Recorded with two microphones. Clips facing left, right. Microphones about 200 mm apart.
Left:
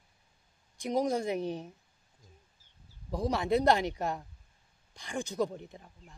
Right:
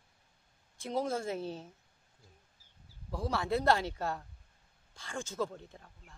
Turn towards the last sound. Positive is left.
turn(degrees=15)  # may be behind; listen again after turning